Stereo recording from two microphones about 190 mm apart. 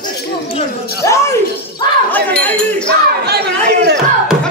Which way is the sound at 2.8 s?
60° right (ahead or behind).